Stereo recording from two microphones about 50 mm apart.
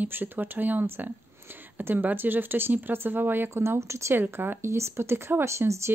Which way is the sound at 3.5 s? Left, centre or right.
Right.